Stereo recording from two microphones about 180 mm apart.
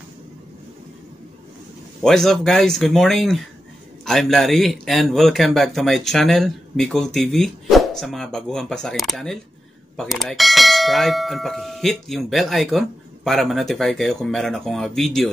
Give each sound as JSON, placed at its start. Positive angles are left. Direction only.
{"t": 2.0, "sound": "speech", "side_deg": 0}